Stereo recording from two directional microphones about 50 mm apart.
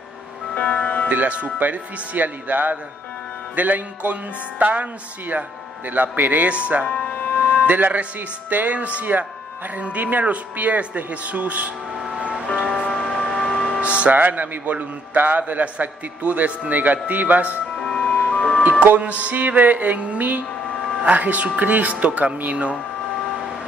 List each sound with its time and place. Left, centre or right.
0.6 s speech: left
1.0 s a man's voice: right
5.9 s a man's voice: right
12.2 s music: right
12.7 s music: left
13.0 s vehicle: centre
13.7 s speech: right
14.2 s a man's voice: right
17.9 s music: centre
18.6 s a man's voice: right